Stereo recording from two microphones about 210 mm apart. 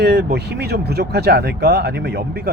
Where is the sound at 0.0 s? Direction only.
50° right (ahead or behind).